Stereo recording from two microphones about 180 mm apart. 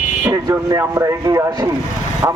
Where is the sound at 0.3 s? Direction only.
20° right (ahead or behind).